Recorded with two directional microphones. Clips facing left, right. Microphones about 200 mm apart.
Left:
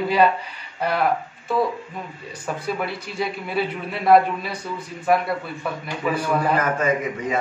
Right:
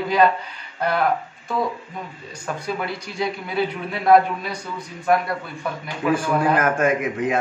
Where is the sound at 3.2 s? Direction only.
Centre (ahead or behind).